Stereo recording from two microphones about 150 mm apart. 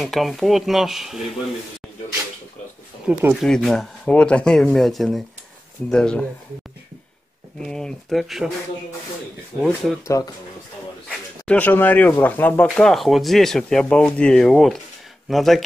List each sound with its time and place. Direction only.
0.0 s speech: centre (ahead or behind)
3.1 s speech: 10° right (ahead or behind)
3.3 s speech: centre (ahead or behind)
7.5 s speech: 5° left (ahead or behind)
9.6 s speech: 5° left (ahead or behind)
10.0 s speech: 20° left (ahead or behind)
11.1 s speech: 10° left (ahead or behind)